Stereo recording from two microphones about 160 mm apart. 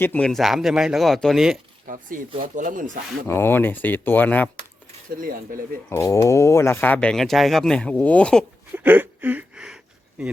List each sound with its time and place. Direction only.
0.0 s speech: 10° left (ahead or behind)
1.9 s speech: 60° right (ahead or behind)
3.2 s speech: 15° left (ahead or behind)
5.1 s speech: 60° right (ahead or behind)
5.9 s speech: 20° left (ahead or behind)
8.7 s a sound: 10° right (ahead or behind)